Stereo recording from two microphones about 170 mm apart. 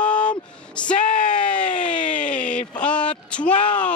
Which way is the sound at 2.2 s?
5° left (ahead or behind).